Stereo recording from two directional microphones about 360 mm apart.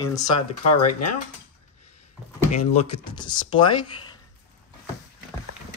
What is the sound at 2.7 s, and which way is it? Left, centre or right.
Speech, centre.